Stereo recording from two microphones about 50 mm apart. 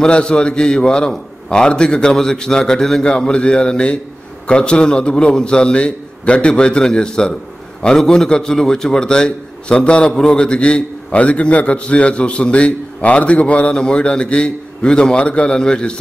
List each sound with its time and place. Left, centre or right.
0.0 s a man's voice: centre